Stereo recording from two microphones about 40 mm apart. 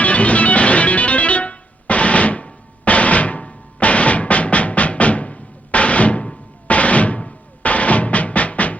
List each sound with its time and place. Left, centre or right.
0.0 s music: left